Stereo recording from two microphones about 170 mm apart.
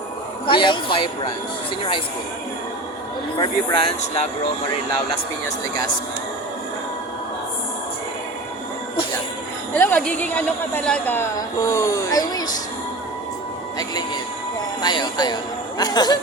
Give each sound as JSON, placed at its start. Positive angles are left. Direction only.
{"t": 0.4, "sound": "speech", "side_deg": 30}
{"t": 3.3, "sound": "speech", "side_deg": 30}
{"t": 9.7, "sound": "speech", "side_deg": 10}
{"t": 14.8, "sound": "speech", "side_deg": 25}